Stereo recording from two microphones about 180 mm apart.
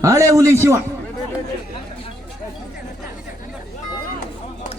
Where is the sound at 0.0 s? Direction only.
15° right (ahead or behind).